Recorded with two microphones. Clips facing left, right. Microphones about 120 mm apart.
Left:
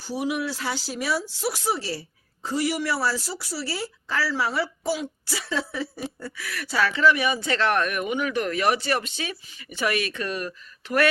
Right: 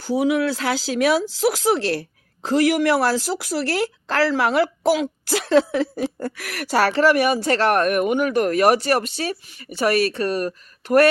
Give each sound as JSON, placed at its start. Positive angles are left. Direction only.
{"t": 0.6, "sound": "a woman's voice", "side_deg": -90}
{"t": 6.3, "sound": "speech", "side_deg": -75}
{"t": 7.0, "sound": "speech", "side_deg": -50}